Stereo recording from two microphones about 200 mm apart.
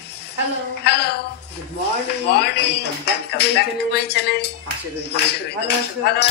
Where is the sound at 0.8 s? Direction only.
55° left (ahead or behind).